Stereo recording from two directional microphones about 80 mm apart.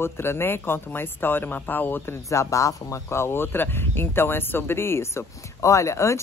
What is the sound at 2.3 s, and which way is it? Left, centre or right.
Speech, left.